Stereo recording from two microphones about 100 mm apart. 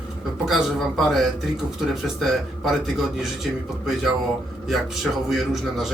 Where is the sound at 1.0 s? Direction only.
Centre (ahead or behind).